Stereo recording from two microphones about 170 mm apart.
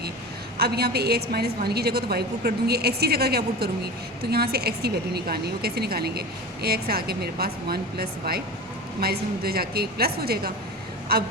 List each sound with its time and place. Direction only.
0.5 s a woman's voice: 70° right (ahead or behind)